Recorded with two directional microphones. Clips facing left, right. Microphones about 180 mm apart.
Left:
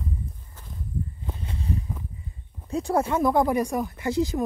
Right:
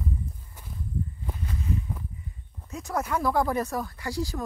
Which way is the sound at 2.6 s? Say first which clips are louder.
Left 7 dB; 30° left (ahead or behind).